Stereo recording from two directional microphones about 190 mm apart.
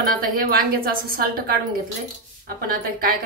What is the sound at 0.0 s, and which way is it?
A woman's voice, 50° right (ahead or behind).